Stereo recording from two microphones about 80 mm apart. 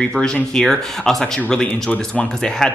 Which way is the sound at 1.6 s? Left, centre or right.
Centre.